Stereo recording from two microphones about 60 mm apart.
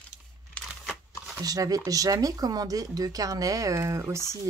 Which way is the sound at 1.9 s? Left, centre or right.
Right.